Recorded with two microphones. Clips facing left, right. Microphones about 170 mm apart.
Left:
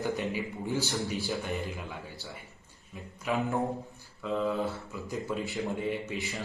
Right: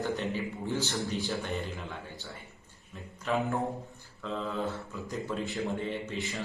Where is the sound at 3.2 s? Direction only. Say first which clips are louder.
Left 1 dB; 15° left (ahead or behind).